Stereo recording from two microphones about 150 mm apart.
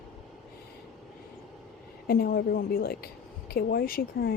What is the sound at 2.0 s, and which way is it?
A woman's voice, 90° left.